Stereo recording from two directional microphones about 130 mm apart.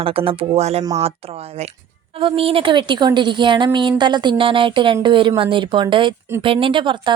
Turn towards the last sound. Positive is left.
turn(degrees=-40)  # may be behind; listen again after turning